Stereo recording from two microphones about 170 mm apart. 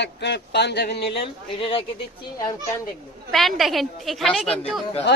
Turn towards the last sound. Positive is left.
turn(degrees=0)  # may be behind; listen again after turning